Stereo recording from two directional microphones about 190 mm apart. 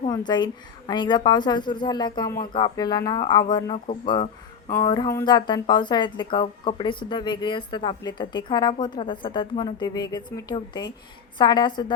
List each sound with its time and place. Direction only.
0.1 s speech: 25° left (ahead or behind)